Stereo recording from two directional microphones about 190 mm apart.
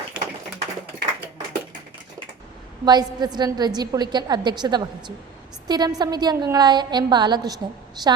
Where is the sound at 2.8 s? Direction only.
20° right (ahead or behind).